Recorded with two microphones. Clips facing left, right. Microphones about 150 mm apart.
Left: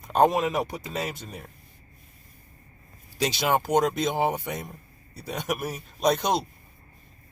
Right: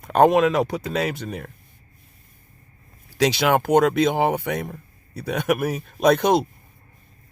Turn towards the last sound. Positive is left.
turn(degrees=-55)  # may be behind; listen again after turning